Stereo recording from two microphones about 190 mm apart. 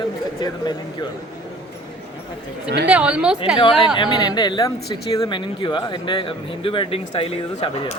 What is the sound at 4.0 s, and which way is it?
Speech, 20° left (ahead or behind).